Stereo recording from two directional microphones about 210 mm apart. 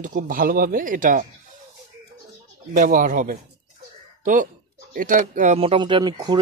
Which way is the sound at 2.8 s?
40° right (ahead or behind).